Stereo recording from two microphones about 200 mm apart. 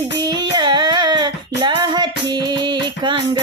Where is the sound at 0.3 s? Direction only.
20° right (ahead or behind).